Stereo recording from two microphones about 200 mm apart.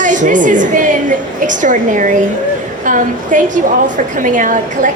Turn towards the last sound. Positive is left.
turn(degrees=-40)  # may be behind; listen again after turning